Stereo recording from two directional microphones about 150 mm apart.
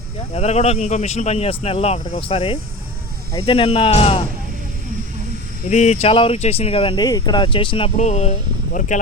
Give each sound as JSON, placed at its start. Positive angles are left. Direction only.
{"t": 0.3, "sound": "speech", "side_deg": 45}
{"t": 5.6, "sound": "speech", "side_deg": 50}
{"t": 7.9, "sound": "speech", "side_deg": 50}